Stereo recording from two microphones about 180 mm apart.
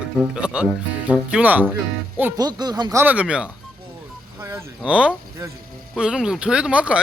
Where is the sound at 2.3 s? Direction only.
20° right (ahead or behind).